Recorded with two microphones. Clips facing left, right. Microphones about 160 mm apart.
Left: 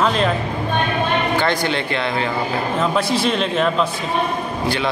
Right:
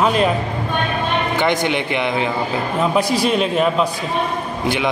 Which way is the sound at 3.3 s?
5° right (ahead or behind).